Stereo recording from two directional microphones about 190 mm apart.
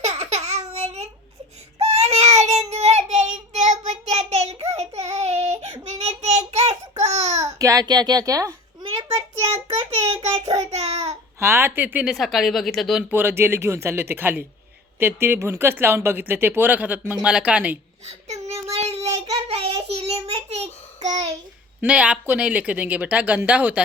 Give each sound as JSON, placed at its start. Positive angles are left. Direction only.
{"t": 0.0, "sound": "laughter", "side_deg": -35}
{"t": 1.8, "sound": "child singing", "side_deg": -35}
{"t": 7.4, "sound": "a sound", "side_deg": -15}
{"t": 10.2, "sound": "child singing", "side_deg": -20}
{"t": 10.7, "sound": "babbling", "side_deg": -35}
{"t": 11.3, "sound": "speech", "side_deg": -15}
{"t": 18.0, "sound": "child singing", "side_deg": -35}
{"t": 21.0, "sound": "a child's voice", "side_deg": -35}
{"t": 21.8, "sound": "speech", "side_deg": -5}